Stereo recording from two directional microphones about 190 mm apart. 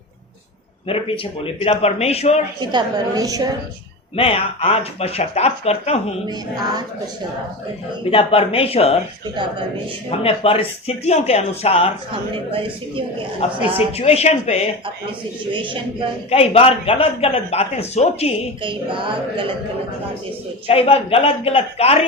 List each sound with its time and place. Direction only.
0.9 s a man's voice: 30° left (ahead or behind)
2.6 s a woman's voice: 20° right (ahead or behind)
4.1 s a man's voice: 30° left (ahead or behind)
6.2 s a woman's voice: 20° right (ahead or behind)
8.1 s a man's voice: 30° left (ahead or behind)
9.3 s a woman's voice: 25° right (ahead or behind)
10.1 s a man's voice: 30° left (ahead or behind)
13.4 s a man's voice: 30° left (ahead or behind)
15.5 s a woman's voice: 25° right (ahead or behind)
16.3 s a man's voice: 30° left (ahead or behind)
18.6 s a woman's voice: 25° right (ahead or behind)
20.7 s a man's voice: 30° left (ahead or behind)